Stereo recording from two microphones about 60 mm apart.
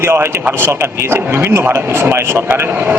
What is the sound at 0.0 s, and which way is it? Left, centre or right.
A man's voice, right.